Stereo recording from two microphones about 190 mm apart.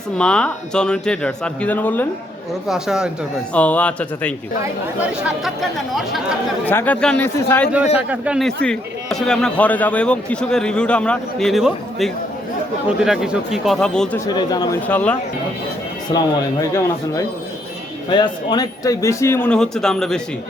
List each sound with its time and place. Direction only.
0.2 s speech: 5° left (ahead or behind)
2.6 s speech: 5° right (ahead or behind)
5.9 s speech: centre (ahead or behind)
7.9 s speech: 5° right (ahead or behind)
14.3 s speech: 20° left (ahead or behind)
14.8 s speech: 10° left (ahead or behind)